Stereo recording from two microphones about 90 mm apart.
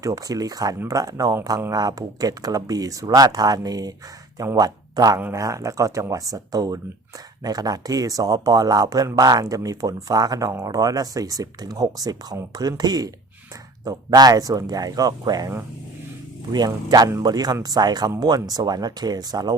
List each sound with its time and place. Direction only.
0.0 s speech: 40° right (ahead or behind)